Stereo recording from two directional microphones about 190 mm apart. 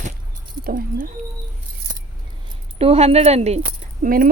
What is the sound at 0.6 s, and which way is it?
Speech, 50° right (ahead or behind).